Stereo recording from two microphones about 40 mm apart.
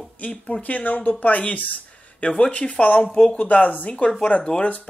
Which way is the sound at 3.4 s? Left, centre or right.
Left.